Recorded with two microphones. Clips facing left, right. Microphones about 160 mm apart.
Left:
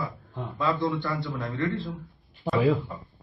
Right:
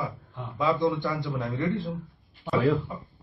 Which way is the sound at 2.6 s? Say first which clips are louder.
Even; 20° left (ahead or behind).